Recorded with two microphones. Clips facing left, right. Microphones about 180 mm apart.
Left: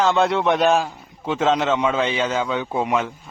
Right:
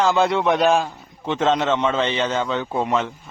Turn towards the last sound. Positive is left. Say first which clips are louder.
# even
turn(degrees=5)  # may be behind; listen again after turning